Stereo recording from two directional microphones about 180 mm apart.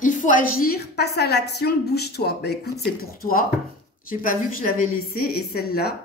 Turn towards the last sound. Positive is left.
turn(degrees=60)  # may be behind; listen again after turning